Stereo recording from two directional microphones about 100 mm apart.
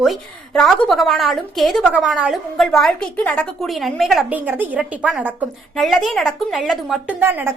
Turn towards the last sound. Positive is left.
turn(degrees=-20)  # may be behind; listen again after turning